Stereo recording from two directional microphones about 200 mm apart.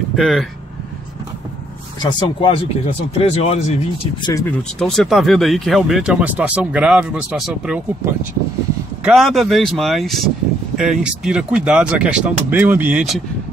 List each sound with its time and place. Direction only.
0.1 s speech: centre (ahead or behind)
2.0 s speech: 20° left (ahead or behind)
4.3 s speech: 15° left (ahead or behind)
4.7 s speech: centre (ahead or behind)